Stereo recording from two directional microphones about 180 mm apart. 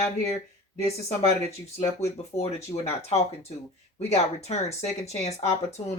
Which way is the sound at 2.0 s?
35° left (ahead or behind).